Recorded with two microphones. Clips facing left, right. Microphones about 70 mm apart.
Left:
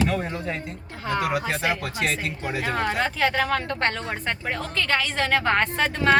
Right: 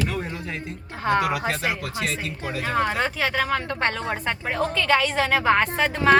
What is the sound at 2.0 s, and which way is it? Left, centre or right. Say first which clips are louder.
Speech: left 4 dB; left.